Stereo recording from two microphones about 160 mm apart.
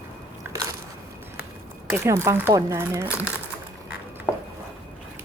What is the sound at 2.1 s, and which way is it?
Speech, 15° right (ahead or behind).